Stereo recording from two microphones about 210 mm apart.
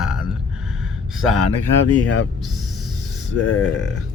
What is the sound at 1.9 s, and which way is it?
Speech, 90° left.